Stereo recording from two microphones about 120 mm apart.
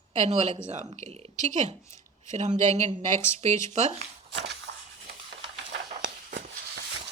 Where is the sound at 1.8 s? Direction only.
25° left (ahead or behind).